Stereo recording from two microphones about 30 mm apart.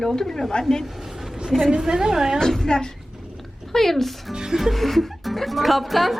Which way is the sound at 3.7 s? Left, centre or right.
Centre.